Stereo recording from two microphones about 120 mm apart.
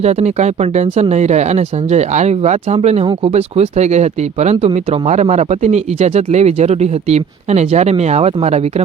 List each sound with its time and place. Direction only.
0.0 s speech: 65° right (ahead or behind)
4.5 s speech: 55° right (ahead or behind)